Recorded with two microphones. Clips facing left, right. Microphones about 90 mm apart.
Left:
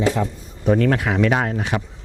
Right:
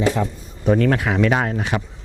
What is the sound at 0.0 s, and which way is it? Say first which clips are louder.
Speech: even; 20° right (ahead or behind).